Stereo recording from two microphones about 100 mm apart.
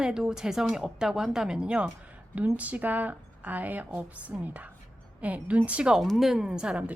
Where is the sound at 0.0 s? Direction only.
5° right (ahead or behind).